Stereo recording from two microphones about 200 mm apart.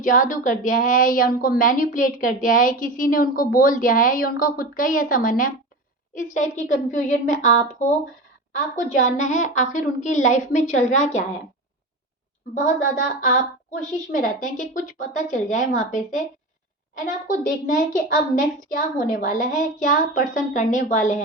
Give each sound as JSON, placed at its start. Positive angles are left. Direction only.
{"t": 0.0, "sound": "a woman's voice", "side_deg": 40}
{"t": 12.5, "sound": "a woman's voice", "side_deg": 40}